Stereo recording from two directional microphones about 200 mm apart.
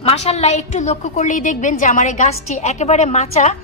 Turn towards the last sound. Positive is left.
turn(degrees=35)  # may be behind; listen again after turning